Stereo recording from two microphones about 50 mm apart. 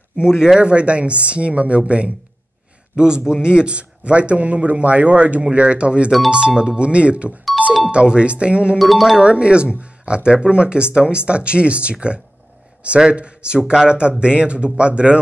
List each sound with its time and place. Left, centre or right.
0.4 s a man's voice: centre
8.7 s speech: centre
9.2 s speech: right